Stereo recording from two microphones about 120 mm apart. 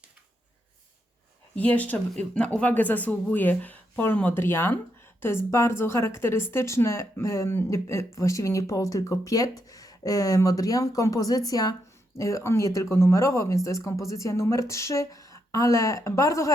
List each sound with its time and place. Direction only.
1.5 s a woman's voice: 15° left (ahead or behind)